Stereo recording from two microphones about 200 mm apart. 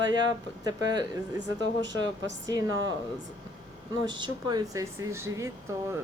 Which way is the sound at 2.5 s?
20° right (ahead or behind).